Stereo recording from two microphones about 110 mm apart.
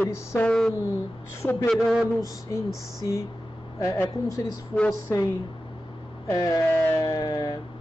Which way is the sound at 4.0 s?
30° left (ahead or behind).